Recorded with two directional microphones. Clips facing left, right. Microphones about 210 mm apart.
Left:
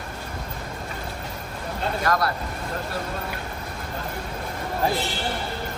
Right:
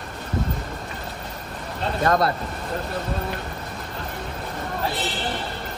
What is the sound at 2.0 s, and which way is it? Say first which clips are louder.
Speech: right 4 dB; 25° right (ahead or behind).